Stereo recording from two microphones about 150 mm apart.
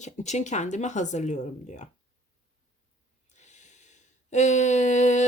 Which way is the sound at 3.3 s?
50° left (ahead or behind).